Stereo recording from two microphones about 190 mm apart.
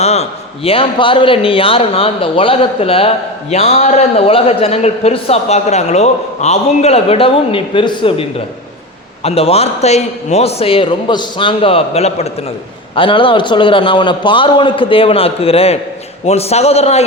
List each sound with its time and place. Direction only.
0.0 s a man's voice: 35° left (ahead or behind)